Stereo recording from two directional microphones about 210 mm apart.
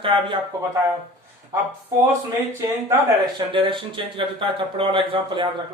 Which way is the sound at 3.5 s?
25° right (ahead or behind).